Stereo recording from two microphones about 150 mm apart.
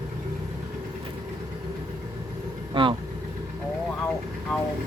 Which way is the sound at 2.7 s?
35° right (ahead or behind).